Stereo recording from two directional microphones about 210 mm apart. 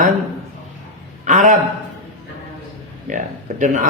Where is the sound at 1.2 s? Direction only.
35° right (ahead or behind).